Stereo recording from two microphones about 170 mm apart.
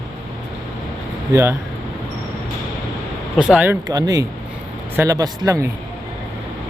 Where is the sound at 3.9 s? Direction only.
20° right (ahead or behind).